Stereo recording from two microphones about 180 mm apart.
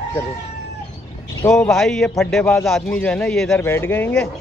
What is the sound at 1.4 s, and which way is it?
A man's voice, 5° left (ahead or behind).